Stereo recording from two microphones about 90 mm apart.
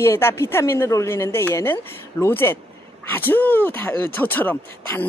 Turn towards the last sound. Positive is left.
turn(degrees=20)  # may be behind; listen again after turning